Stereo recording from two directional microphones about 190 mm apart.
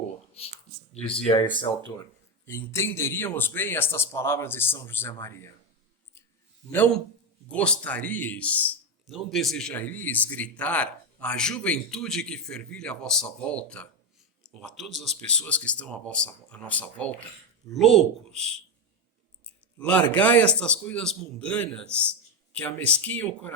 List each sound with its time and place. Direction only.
0.3 s speech: 30° left (ahead or behind)
2.5 s a man's voice: 15° left (ahead or behind)
7.4 s a man's voice: 5° left (ahead or behind)
19.8 s a man's voice: 10° left (ahead or behind)